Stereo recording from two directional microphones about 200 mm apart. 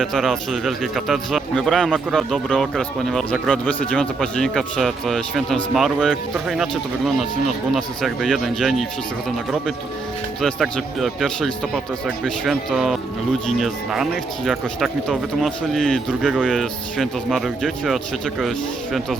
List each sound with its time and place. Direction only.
0.0 s speech: centre (ahead or behind)
10.4 s speech: centre (ahead or behind)